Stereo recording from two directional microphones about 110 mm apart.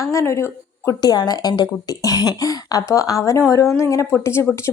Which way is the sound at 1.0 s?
35° left (ahead or behind).